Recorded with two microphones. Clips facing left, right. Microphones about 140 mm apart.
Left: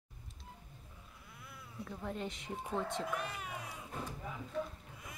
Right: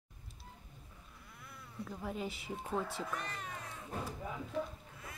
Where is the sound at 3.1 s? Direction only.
10° left (ahead or behind).